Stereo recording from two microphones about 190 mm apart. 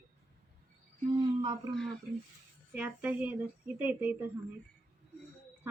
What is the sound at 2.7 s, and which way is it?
A woman's voice, 10° right (ahead or behind).